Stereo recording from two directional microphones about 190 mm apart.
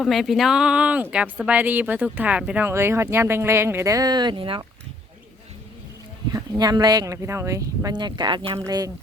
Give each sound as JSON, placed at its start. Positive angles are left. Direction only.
{"t": 0.0, "sound": "speech", "side_deg": 0}
{"t": 6.3, "sound": "speech", "side_deg": -20}